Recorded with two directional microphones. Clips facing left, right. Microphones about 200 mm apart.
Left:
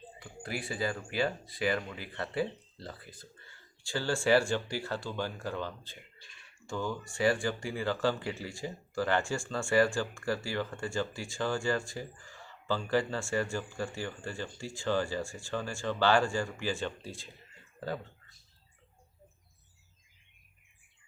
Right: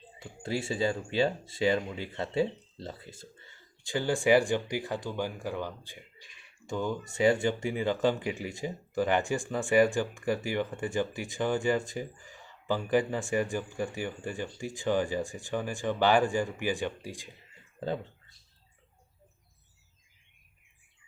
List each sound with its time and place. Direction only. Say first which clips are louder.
0.2 s speech: right 6 dB; 25° right (ahead or behind)